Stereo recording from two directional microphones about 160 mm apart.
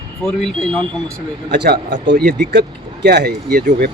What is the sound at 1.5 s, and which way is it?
Speech, 90° right.